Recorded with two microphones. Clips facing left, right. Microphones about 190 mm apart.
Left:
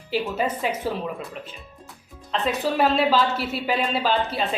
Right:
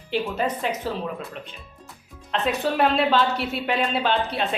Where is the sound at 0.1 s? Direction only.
5° left (ahead or behind).